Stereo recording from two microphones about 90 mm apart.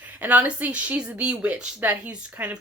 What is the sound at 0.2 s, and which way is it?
Speech, 15° right (ahead or behind).